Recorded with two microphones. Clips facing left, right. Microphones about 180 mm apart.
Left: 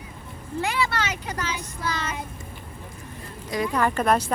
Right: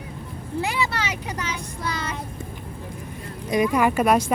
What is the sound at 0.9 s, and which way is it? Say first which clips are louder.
Vehicle: even; 10° right (ahead or behind).